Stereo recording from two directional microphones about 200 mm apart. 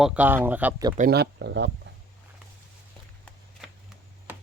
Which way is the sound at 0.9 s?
50° right (ahead or behind).